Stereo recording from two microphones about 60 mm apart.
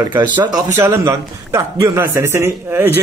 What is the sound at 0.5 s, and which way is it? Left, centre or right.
Speech, right.